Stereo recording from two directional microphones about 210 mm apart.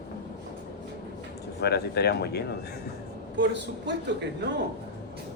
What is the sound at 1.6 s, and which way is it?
Speech, 50° left (ahead or behind).